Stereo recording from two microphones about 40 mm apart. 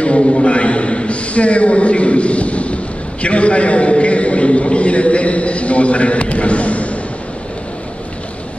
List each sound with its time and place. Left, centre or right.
0.0 s a man's voice: left